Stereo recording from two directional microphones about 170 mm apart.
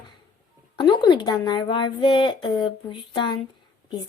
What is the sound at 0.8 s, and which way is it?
A woman's voice, 30° left (ahead or behind).